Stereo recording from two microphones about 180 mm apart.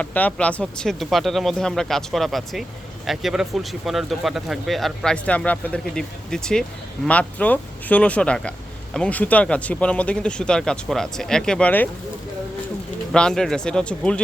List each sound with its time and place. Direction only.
0.0 s speech: 10° left (ahead or behind)
13.1 s speech: 5° left (ahead or behind)